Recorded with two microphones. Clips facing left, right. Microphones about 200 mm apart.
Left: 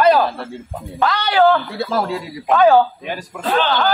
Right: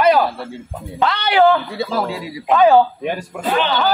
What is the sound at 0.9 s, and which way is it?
Screaming, 20° right (ahead or behind).